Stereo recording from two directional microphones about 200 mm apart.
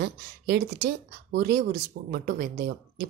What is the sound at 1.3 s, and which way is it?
A woman's voice, 55° right (ahead or behind).